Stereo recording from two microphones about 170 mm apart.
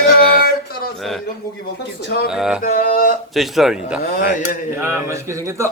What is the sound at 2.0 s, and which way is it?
Speech, 75° left (ahead or behind).